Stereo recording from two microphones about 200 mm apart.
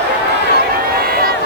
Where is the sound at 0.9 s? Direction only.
50° right (ahead or behind).